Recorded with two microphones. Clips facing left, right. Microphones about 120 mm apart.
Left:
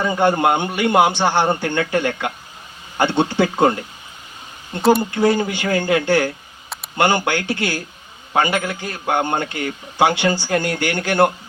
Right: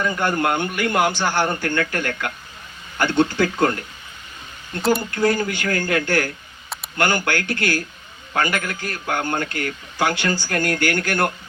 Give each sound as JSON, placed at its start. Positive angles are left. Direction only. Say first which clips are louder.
{"t": 0.2, "sound": "speech", "louder": "left 7 dB", "side_deg": 25}
{"t": 5.1, "sound": "speech", "louder": "left 3 dB", "side_deg": 25}